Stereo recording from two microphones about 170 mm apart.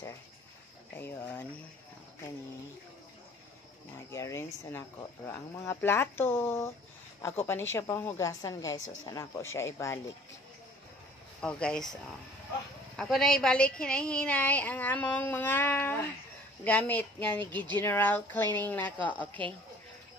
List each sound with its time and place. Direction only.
0.9 s a woman's voice: 10° left (ahead or behind)
4.1 s a woman's voice: 15° left (ahead or behind)
11.4 s speech: 5° left (ahead or behind)
12.9 s a woman's voice: centre (ahead or behind)